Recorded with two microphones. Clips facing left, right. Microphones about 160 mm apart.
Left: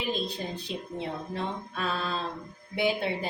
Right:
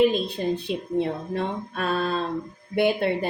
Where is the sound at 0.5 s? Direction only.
55° right (ahead or behind).